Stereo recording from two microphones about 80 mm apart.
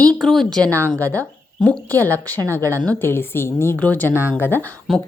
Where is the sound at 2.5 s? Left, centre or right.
Right.